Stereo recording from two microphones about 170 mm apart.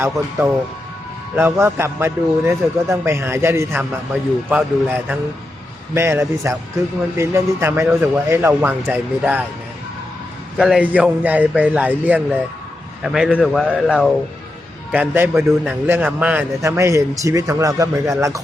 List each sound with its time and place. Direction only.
0.0 s a man's voice: 15° right (ahead or behind)
10.6 s a man's voice: 5° right (ahead or behind)
15.1 s a man's voice: 10° right (ahead or behind)